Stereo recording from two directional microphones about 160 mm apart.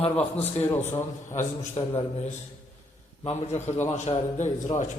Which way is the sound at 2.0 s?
45° left (ahead or behind).